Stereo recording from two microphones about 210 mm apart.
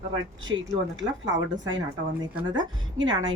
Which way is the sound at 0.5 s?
75° right (ahead or behind).